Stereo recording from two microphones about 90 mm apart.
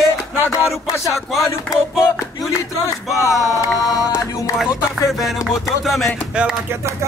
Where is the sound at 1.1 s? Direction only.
Centre (ahead or behind).